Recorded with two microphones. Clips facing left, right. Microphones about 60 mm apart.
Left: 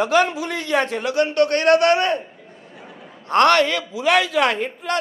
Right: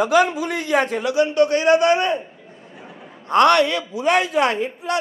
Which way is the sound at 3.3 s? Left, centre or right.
Left.